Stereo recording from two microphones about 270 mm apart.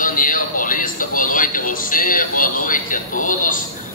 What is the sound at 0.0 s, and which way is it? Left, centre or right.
A man's voice, left.